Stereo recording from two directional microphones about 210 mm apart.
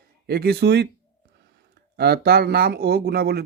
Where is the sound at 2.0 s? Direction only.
50° right (ahead or behind).